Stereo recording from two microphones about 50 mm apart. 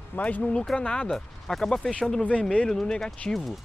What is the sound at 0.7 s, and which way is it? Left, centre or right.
Speech, left.